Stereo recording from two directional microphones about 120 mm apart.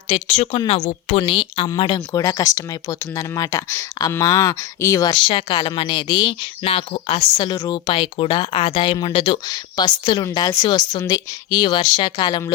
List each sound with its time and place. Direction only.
0.1 s a woman's voice: 60° left (ahead or behind)
1.2 s speech: 45° left (ahead or behind)
6.7 s speech: 50° left (ahead or behind); by 12.4 s 35° left (ahead or behind)